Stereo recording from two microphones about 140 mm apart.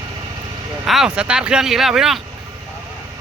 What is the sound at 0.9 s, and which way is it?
Speech, 5° right (ahead or behind).